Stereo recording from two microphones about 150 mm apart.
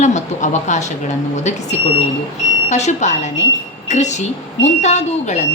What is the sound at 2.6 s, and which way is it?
A woman's voice, 50° left (ahead or behind).